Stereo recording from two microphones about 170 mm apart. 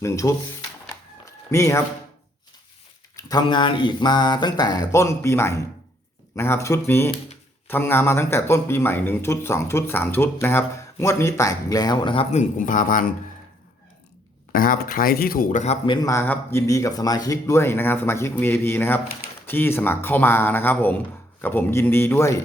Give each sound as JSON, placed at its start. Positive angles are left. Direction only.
{"t": 0.0, "sound": "speech", "side_deg": 15}
{"t": 0.9, "sound": "a sound", "side_deg": 15}
{"t": 3.2, "sound": "speech", "side_deg": 20}
{"t": 14.5, "sound": "speech", "side_deg": 55}
{"t": 15.6, "sound": "a man's voice", "side_deg": 40}
{"t": 16.0, "sound": "speech", "side_deg": 20}